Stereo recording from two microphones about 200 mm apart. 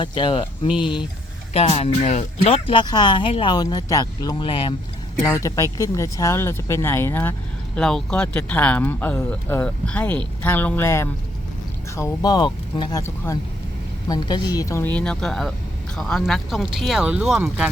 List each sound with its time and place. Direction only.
0.0 s speech: 25° left (ahead or behind)
5.2 s speech: 15° left (ahead or behind); by 17.7 s 5° right (ahead or behind)